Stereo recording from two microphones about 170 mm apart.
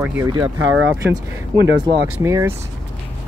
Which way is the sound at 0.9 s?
20° right (ahead or behind).